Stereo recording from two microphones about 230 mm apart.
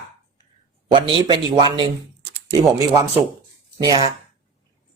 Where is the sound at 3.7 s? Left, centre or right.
Centre.